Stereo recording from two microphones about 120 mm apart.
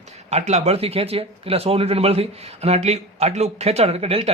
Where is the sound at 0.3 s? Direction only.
65° right (ahead or behind).